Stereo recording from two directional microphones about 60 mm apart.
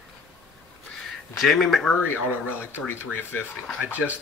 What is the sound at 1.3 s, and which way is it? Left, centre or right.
Speech, centre.